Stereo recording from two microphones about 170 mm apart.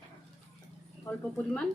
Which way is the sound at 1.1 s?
20° left (ahead or behind).